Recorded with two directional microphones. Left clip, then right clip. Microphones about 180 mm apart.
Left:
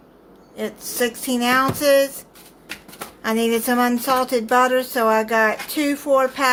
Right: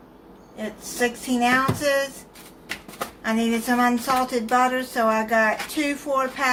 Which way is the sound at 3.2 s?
60° left (ahead or behind).